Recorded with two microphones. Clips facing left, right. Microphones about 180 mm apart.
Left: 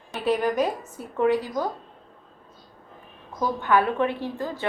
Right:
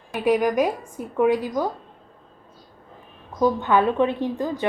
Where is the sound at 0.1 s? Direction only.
10° right (ahead or behind).